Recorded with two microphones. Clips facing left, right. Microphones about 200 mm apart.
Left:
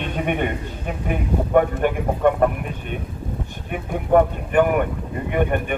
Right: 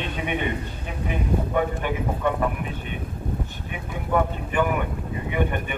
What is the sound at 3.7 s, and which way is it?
A man's voice, 50° left (ahead or behind).